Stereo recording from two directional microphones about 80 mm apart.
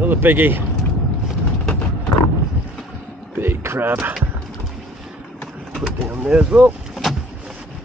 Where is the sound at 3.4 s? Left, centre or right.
Right.